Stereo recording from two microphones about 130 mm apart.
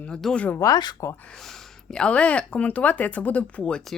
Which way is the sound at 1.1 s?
10° left (ahead or behind).